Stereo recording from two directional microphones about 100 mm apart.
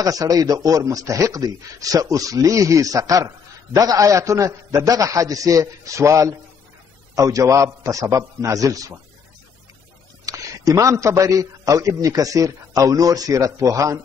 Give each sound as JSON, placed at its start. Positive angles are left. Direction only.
{"t": 0.0, "sound": "a man's voice", "side_deg": -35}
{"t": 10.2, "sound": "a man's voice", "side_deg": -35}